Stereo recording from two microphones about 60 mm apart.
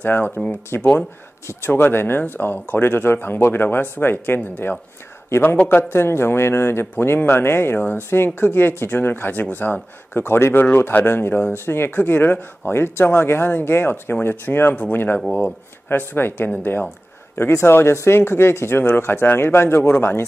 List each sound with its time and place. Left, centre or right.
0.0 s a man's voice: left
17.4 s a man's voice: left